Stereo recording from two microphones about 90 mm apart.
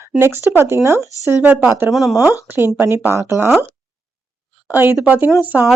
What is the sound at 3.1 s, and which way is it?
Speech, 30° right (ahead or behind).